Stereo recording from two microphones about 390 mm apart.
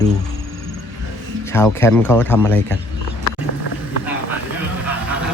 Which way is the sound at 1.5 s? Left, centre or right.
Centre.